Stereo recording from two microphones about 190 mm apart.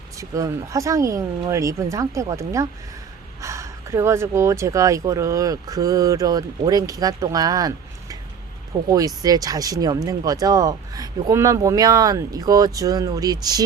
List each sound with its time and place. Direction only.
0.2 s speech: 15° right (ahead or behind)
8.9 s speech: 20° right (ahead or behind)